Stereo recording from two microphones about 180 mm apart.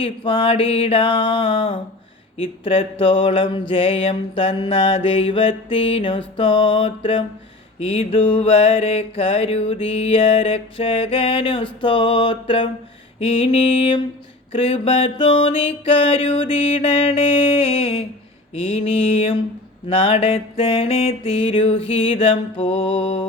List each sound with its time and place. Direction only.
0.0 s mantra: 30° left (ahead or behind)